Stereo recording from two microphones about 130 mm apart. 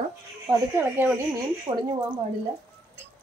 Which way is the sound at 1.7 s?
40° right (ahead or behind).